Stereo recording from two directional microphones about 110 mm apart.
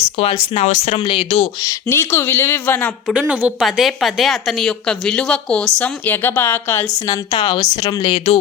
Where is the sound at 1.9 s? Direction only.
20° left (ahead or behind).